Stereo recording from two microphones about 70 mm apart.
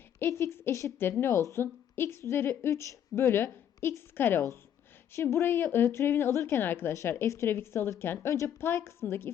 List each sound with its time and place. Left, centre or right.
0.3 s speech: left
0.9 s a woman's voice: left